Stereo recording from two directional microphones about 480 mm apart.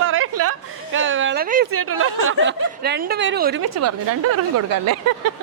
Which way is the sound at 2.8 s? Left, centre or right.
Centre.